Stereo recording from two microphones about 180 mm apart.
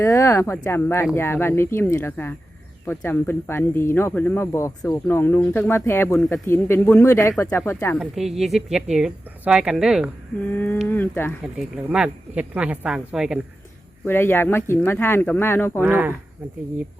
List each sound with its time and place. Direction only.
0.0 s speech: 15° left (ahead or behind)
7.9 s speech: centre (ahead or behind)
10.4 s speech: 10° left (ahead or behind)
10.8 s a sound: 10° left (ahead or behind)
11.5 s speech: 5° right (ahead or behind)
14.0 s speech: 10° left (ahead or behind)
15.8 s speech: 10° right (ahead or behind)